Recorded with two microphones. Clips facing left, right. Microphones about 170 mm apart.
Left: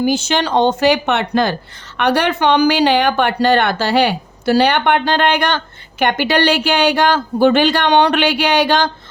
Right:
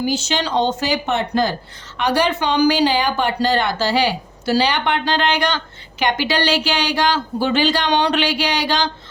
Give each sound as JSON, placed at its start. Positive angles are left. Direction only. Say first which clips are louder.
{"t": 0.0, "sound": "speech", "louder": "left 5 dB", "side_deg": 55}